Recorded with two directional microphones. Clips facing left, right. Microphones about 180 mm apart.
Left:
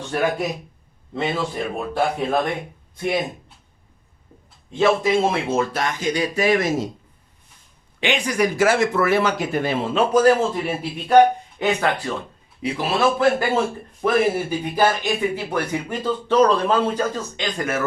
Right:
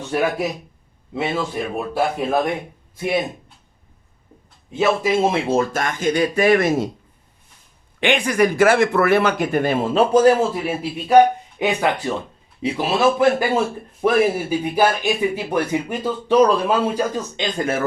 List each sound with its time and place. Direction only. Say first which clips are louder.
1.1 s speech: right 1 dB; 5° right (ahead or behind)
4.7 s speech: even; 5° right (ahead or behind)
5.3 s speech: right 3 dB; 35° right (ahead or behind)
5.7 s speech: right 3 dB; 50° right (ahead or behind)
8.0 s speech: right 3 dB; 55° right (ahead or behind)
10.1 s speech: right 1 dB; 25° right (ahead or behind)
10.5 s speech: right 1 dB; 5° right (ahead or behind)
11.6 s speech: right 1 dB; 15° right (ahead or behind)
17.3 s speech: right 2 dB; 25° right (ahead or behind)